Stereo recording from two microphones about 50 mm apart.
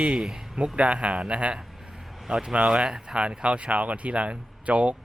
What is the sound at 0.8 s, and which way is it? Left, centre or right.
Speech, right.